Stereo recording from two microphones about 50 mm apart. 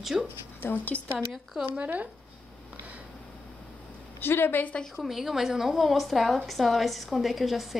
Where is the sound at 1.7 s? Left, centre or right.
Right.